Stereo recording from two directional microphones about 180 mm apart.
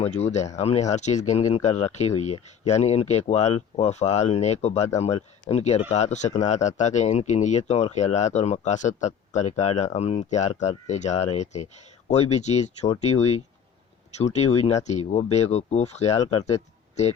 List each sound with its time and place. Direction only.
0.0 s speech: 40° left (ahead or behind)
16.2 s speech: 20° left (ahead or behind)
17.0 s speech: 40° left (ahead or behind)